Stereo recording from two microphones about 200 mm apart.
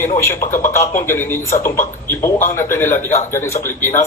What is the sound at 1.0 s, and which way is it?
Speech, 10° left (ahead or behind).